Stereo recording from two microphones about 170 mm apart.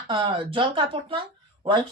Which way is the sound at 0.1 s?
30° right (ahead or behind).